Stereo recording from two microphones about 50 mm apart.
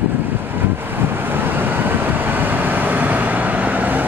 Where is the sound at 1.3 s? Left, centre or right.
Right.